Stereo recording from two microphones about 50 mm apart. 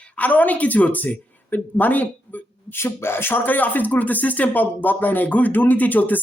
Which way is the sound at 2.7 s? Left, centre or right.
Left.